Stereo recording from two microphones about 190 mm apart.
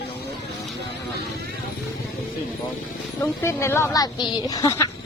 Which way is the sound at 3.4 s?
15° left (ahead or behind).